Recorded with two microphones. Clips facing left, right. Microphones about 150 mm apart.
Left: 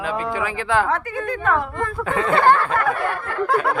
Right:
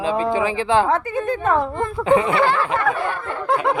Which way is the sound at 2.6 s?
25° right (ahead or behind).